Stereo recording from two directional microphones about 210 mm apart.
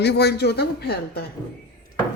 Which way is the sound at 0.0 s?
55° left (ahead or behind).